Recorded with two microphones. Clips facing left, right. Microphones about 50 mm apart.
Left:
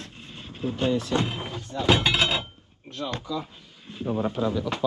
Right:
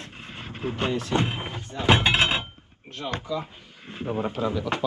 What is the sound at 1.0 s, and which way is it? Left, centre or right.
A man's voice, right.